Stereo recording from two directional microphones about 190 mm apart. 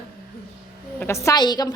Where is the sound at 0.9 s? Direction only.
15° left (ahead or behind).